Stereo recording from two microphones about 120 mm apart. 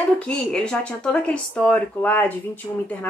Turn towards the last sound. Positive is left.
turn(degrees=15)  # may be behind; listen again after turning